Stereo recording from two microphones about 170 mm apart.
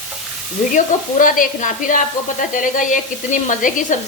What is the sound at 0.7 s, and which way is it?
A woman's voice, 50° left (ahead or behind).